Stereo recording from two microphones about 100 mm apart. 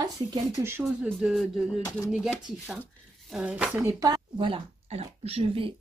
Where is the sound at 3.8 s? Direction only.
30° right (ahead or behind).